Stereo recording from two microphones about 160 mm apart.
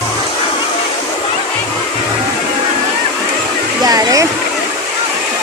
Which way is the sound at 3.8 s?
25° right (ahead or behind).